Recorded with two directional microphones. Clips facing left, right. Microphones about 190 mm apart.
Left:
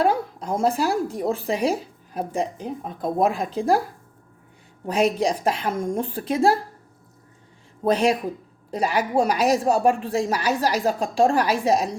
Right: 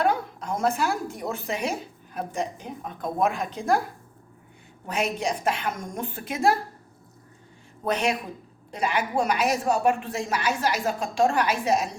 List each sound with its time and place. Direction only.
0.0 s speech: 35° left (ahead or behind)
4.9 s speech: 35° left (ahead or behind)
7.9 s speech: 35° left (ahead or behind)